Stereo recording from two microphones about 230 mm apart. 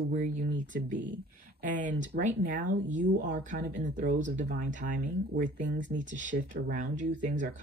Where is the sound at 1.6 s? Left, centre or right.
Right.